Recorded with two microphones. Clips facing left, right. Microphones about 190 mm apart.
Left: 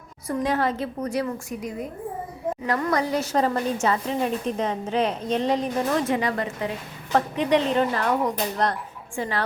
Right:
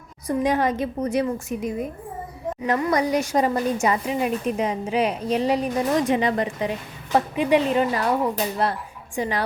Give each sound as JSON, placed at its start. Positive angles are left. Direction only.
{"t": 0.3, "sound": "a woman's voice", "side_deg": -15}